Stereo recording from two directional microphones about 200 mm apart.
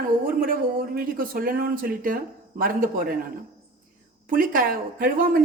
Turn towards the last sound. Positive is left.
turn(degrees=-45)  # may be behind; listen again after turning